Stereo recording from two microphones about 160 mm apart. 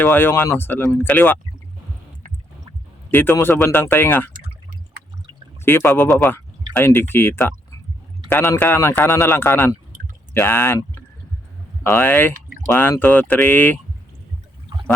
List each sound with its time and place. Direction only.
0.0 s speech: 10° left (ahead or behind)
3.1 s speech: 10° left (ahead or behind)
5.6 s speech: 15° left (ahead or behind)
9.9 s a sound: 55° right (ahead or behind)
10.3 s speech: 10° left (ahead or behind)